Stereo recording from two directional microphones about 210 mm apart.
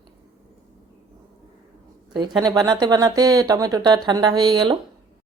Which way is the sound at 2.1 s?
20° right (ahead or behind).